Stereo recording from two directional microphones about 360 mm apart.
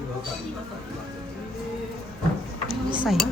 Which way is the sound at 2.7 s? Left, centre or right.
Centre.